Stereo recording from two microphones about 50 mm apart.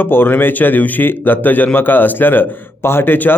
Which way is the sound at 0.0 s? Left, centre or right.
Left.